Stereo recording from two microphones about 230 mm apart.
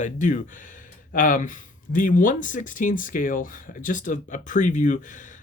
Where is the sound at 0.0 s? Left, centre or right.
Left.